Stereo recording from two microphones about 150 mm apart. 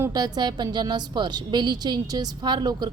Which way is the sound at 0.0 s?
25° right (ahead or behind).